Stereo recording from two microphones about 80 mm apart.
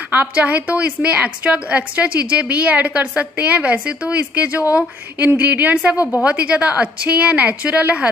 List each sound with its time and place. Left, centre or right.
0.1 s a woman's voice: centre